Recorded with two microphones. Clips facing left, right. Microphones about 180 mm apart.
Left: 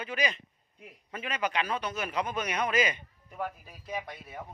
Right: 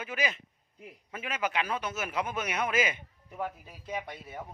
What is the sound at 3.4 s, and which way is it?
Speech, 25° right (ahead or behind).